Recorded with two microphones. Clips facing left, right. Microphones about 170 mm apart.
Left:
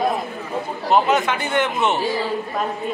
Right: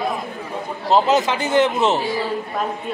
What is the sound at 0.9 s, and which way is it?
A man's voice, 35° right (ahead or behind).